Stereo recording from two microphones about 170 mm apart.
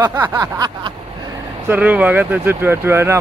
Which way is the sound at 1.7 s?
10° right (ahead or behind).